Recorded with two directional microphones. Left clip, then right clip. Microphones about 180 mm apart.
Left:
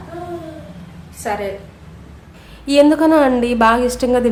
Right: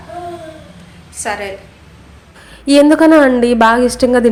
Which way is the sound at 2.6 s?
25° right (ahead or behind).